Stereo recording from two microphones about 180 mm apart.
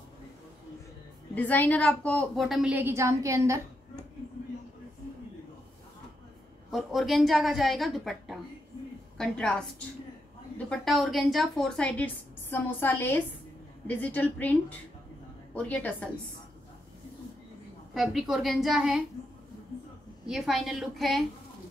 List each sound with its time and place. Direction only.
1.3 s a woman's voice: 10° left (ahead or behind); by 3.5 s 15° right (ahead or behind)
6.7 s a woman's voice: centre (ahead or behind)
10.7 s a woman's voice: centre (ahead or behind)
17.9 s a woman's voice: centre (ahead or behind)
20.2 s a woman's voice: centre (ahead or behind)